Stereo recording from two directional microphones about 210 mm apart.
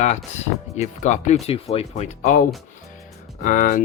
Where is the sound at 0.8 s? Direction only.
35° left (ahead or behind).